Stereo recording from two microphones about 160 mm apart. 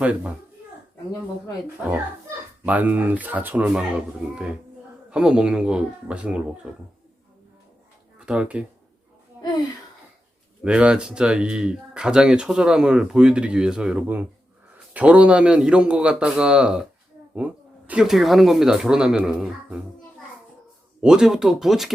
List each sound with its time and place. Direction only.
0.0 s a man's voice: 10° right (ahead or behind)
2.6 s a man's voice: 10° right (ahead or behind)
5.1 s speech: 5° right (ahead or behind)
8.2 s speech: 5° right (ahead or behind)
10.6 s a man's voice: 5° right (ahead or behind)
21.0 s speech: 5° right (ahead or behind)